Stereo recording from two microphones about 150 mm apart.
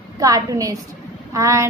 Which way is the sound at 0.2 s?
20° right (ahead or behind).